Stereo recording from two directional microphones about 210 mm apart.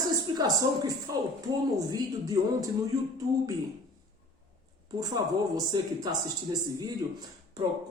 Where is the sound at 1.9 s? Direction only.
15° right (ahead or behind).